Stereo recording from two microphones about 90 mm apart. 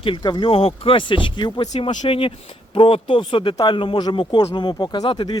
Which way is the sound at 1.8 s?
85° left.